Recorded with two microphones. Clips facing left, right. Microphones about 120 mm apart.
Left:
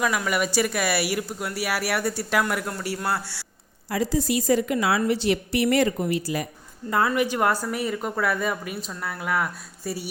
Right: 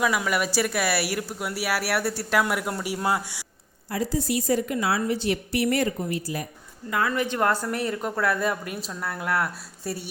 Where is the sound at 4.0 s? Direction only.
90° left.